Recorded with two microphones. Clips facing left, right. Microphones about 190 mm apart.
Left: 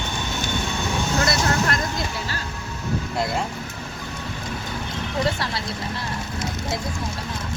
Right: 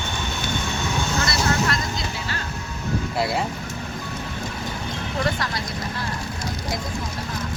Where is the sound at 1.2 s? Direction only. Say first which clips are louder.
Left 1 dB; 50° left (ahead or behind).